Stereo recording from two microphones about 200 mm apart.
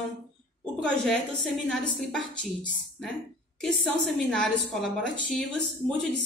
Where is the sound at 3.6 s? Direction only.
Centre (ahead or behind).